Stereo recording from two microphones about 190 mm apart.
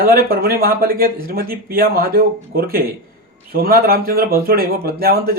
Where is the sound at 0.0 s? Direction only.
50° right (ahead or behind).